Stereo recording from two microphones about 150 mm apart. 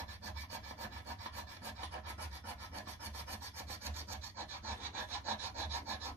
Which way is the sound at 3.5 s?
15° right (ahead or behind).